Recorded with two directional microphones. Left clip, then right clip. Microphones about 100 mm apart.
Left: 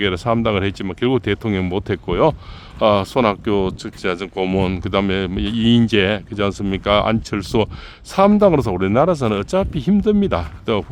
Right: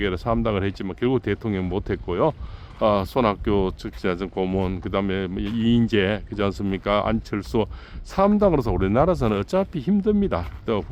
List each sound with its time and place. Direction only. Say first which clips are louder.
0.0 s speech: left 5 dB; 35° left (ahead or behind)
4.4 s speech: left 5 dB; 50° left (ahead or behind)